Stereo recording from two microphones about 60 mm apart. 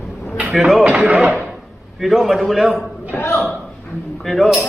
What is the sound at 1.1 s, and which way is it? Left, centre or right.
Speech, right.